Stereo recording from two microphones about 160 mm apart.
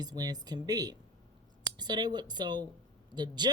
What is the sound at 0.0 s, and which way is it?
Speech, 25° right (ahead or behind).